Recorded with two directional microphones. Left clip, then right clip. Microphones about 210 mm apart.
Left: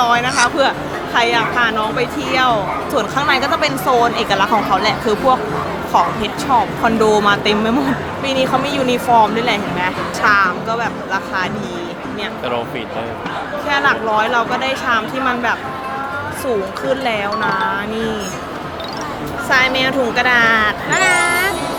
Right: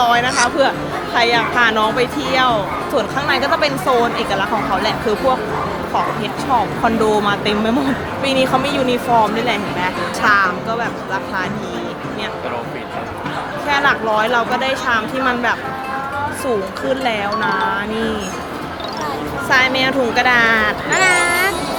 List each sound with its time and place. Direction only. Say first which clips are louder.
0.0 s a woman's voice: even; centre (ahead or behind)
1.5 s a woman's voice: right 2 dB; 15° right (ahead or behind)
2.3 s a woman's voice: left 2 dB; centre (ahead or behind)
6.5 s a woman's voice: left 1 dB; 10° left (ahead or behind)
13.7 s a woman's voice: even; centre (ahead or behind)
19.5 s a woman's voice: even; centre (ahead or behind)